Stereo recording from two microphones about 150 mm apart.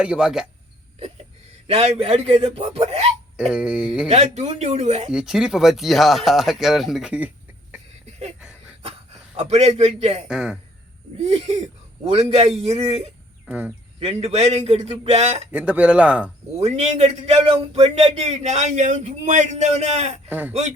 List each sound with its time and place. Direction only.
0.0 s speech: 5° right (ahead or behind)
1.6 s speech: 40° right (ahead or behind)
3.3 s a man's voice: 5° right (ahead or behind)
4.1 s a man's voice: 45° right (ahead or behind)
5.1 s speech: 5° right (ahead or behind)
8.8 s speech: 40° right (ahead or behind)
10.2 s speech: 5° right (ahead or behind)
11.2 s a man's voice: 45° right (ahead or behind)
13.5 s a man's voice: 10° right (ahead or behind)
14.0 s a man's voice: 45° right (ahead or behind)
15.5 s a man's voice: 10° right (ahead or behind)
16.6 s a man's voice: 50° right (ahead or behind)